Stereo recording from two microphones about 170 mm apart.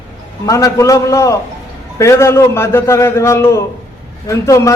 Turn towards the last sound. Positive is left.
turn(degrees=15)  # may be behind; listen again after turning